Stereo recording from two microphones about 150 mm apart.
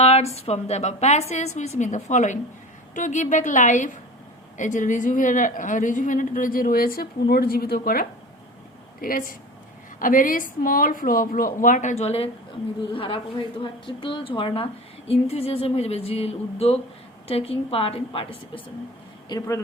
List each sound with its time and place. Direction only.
0.0 s a woman's voice: 45° left (ahead or behind)
19.3 s speech: 20° left (ahead or behind)